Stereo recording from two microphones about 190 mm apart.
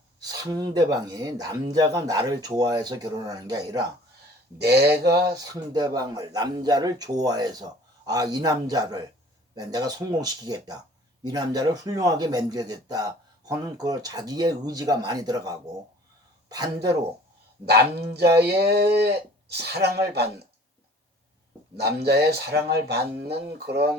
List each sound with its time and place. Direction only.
0.2 s speech: 20° right (ahead or behind)
4.5 s speech: 60° right (ahead or behind)
5.3 s speech: 20° right (ahead or behind)
17.7 s speech: 60° right (ahead or behind)
21.8 s speech: 60° right (ahead or behind)